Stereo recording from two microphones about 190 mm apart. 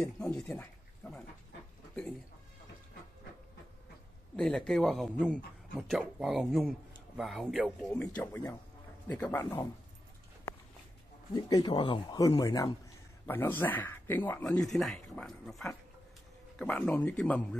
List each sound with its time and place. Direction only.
0.2 s a sound: 5° left (ahead or behind)
4.4 s speech: 5° left (ahead or behind)
11.3 s speech: 20° left (ahead or behind)
13.3 s speech: 10° left (ahead or behind)